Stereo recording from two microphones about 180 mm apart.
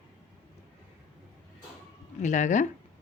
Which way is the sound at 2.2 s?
45° left (ahead or behind).